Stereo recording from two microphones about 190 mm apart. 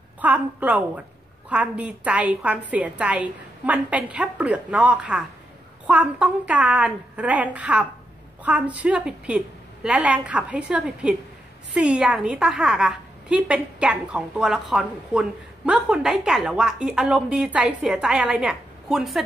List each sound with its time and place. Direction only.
0.2 s a woman's voice: 10° right (ahead or behind)